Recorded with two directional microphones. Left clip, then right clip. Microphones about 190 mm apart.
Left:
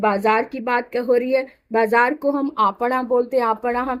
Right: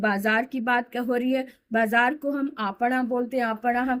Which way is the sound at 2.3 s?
30° left (ahead or behind).